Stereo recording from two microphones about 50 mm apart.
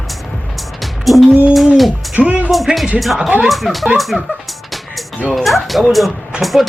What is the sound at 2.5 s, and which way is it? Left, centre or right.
Speech, centre.